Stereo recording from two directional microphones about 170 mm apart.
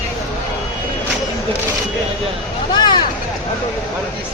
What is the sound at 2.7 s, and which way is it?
Speech, 25° left (ahead or behind).